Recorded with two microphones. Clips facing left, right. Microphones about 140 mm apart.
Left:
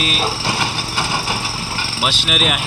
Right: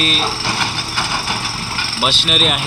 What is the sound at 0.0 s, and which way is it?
Speech, 10° left (ahead or behind).